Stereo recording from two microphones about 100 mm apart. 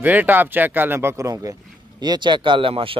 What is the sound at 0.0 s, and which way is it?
A man's voice, 20° right (ahead or behind).